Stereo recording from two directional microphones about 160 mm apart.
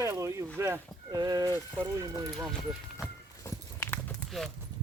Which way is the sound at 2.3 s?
5° left (ahead or behind).